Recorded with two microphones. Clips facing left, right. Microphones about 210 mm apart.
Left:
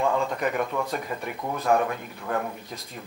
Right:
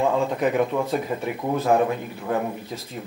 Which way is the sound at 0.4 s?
5° right (ahead or behind).